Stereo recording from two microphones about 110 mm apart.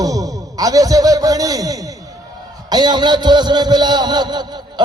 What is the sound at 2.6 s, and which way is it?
A man's voice, 40° right (ahead or behind).